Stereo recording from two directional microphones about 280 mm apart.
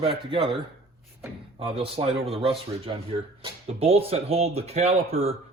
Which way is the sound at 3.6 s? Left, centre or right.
Right.